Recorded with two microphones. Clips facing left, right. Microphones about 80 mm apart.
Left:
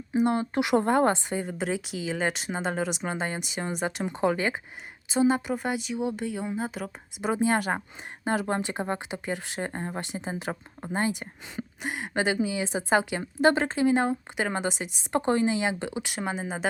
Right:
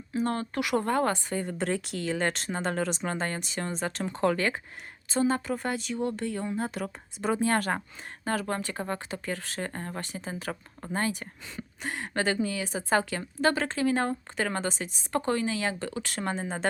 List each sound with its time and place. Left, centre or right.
0.1 s speech: centre
1.5 s a woman's voice: centre